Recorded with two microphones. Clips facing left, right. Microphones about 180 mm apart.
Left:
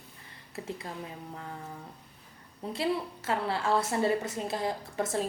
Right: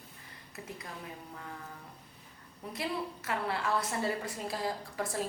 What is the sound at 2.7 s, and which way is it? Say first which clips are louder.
A woman's voice: left 5 dB; 30° left (ahead or behind).